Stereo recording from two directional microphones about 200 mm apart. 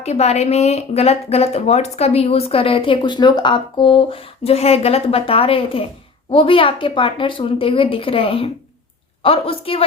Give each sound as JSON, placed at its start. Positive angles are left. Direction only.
{"t": 0.0, "sound": "a woman's voice", "side_deg": 35}